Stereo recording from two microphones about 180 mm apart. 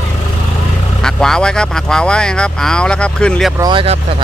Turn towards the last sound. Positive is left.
turn(degrees=-25)  # may be behind; listen again after turning